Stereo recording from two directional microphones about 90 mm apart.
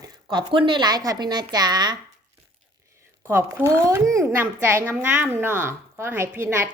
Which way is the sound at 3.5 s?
30° right (ahead or behind).